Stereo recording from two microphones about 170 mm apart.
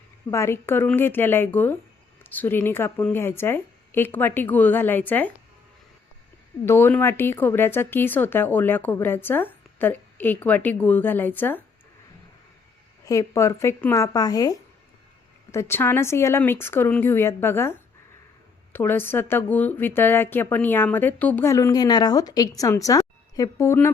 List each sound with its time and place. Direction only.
0.3 s speech: 15° left (ahead or behind)
6.7 s speech: 15° left (ahead or behind)
13.1 s speech: 20° left (ahead or behind)